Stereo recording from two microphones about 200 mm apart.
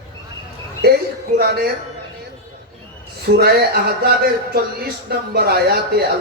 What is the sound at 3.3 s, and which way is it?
A man's voice, 50° right (ahead or behind).